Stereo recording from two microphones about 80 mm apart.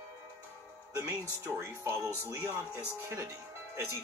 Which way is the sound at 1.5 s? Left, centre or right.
Right.